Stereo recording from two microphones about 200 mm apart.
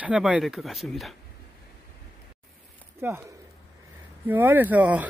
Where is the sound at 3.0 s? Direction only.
10° right (ahead or behind).